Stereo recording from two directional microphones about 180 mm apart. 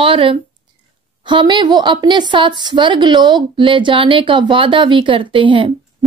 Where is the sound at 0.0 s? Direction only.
30° right (ahead or behind).